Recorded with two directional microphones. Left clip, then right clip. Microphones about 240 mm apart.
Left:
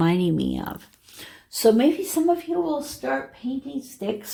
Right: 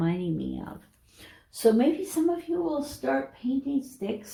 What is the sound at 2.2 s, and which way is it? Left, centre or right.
Speech, left.